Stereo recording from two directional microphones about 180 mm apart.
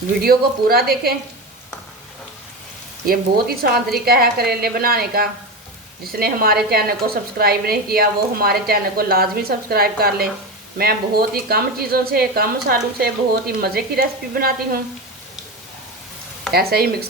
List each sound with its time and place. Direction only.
0.2 s a woman's voice: 60° right (ahead or behind)
3.1 s a woman's voice: 55° right (ahead or behind)
16.5 s a woman's voice: 60° right (ahead or behind)